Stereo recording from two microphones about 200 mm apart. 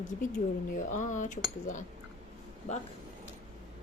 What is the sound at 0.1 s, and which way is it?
A woman's voice, 40° left (ahead or behind).